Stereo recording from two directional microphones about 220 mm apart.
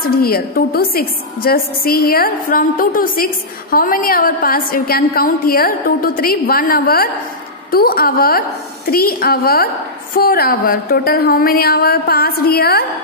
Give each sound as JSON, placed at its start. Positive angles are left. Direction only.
{"t": 0.0, "sound": "a woman's voice", "side_deg": 40}